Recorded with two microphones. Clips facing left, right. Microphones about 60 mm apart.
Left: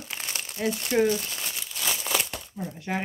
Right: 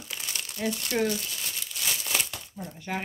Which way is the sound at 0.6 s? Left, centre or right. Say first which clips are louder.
Left 4 dB; centre.